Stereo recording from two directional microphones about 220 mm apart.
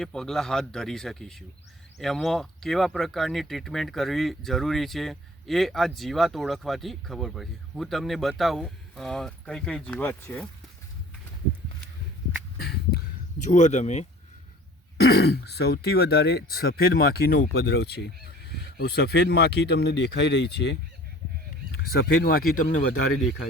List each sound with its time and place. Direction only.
0.0 s speech: centre (ahead or behind)
12.5 s a sound: 50° left (ahead or behind)
13.4 s speech: 35° left (ahead or behind)
15.0 s speech: 50° left (ahead or behind)
22.2 s speech: 40° left (ahead or behind)